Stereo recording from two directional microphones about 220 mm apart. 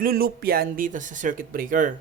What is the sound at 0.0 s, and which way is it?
Speech, 40° right (ahead or behind).